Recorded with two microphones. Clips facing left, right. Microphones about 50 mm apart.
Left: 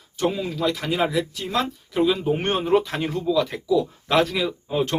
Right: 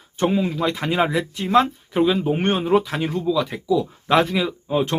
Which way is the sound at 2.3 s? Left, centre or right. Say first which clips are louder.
Right 2 dB; centre.